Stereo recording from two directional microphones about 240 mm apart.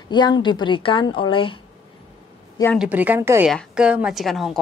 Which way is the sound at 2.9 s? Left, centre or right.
Centre.